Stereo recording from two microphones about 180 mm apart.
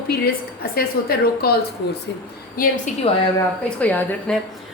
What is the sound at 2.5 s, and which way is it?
Speech, 50° left (ahead or behind).